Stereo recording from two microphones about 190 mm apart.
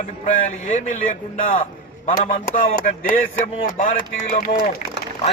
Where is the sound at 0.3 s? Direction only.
40° left (ahead or behind).